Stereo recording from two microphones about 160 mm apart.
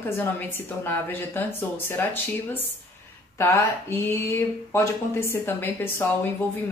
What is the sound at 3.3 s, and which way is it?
Speech, 15° left (ahead or behind).